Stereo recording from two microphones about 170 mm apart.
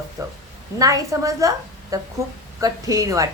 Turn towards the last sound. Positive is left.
turn(degrees=-20)  # may be behind; listen again after turning